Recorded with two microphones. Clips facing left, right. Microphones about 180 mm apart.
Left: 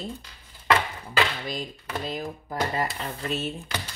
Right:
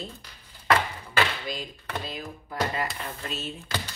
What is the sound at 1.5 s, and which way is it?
Speech, 45° left (ahead or behind).